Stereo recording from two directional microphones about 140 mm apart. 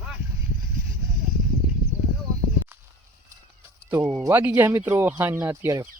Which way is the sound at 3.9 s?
15° right (ahead or behind).